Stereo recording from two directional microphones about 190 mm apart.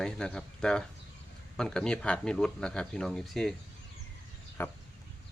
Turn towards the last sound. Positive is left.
turn(degrees=10)  # may be behind; listen again after turning